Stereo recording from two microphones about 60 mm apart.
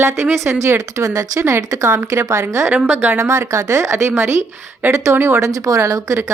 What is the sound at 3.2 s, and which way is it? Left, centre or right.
A woman's voice, right.